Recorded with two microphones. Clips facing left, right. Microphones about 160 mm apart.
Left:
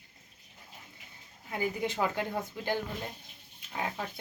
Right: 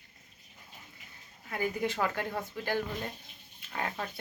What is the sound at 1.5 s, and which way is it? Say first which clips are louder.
Speech: even; 15° left (ahead or behind).